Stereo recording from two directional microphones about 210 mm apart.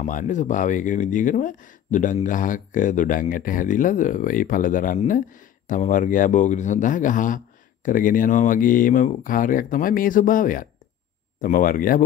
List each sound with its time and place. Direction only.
0.0 s speech: 35° left (ahead or behind)